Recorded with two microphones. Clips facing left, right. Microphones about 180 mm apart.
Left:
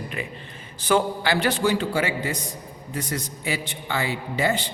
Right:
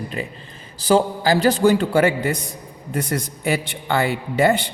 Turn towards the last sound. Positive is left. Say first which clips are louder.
# right 6 dB
turn(degrees=-60)  # may be behind; listen again after turning